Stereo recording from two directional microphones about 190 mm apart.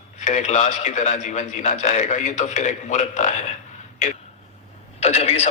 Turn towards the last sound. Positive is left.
turn(degrees=35)  # may be behind; listen again after turning